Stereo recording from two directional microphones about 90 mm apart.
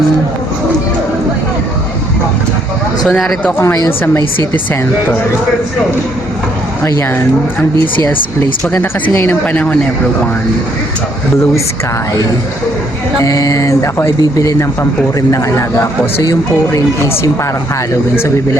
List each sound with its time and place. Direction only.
3.1 s speech: 5° left (ahead or behind)
3.8 s speech: 25° left (ahead or behind)
8.6 s speech: 20° left (ahead or behind)
13.2 s a man's voice: 40° left (ahead or behind)